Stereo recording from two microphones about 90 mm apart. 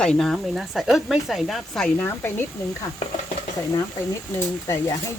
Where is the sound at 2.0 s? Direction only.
25° left (ahead or behind).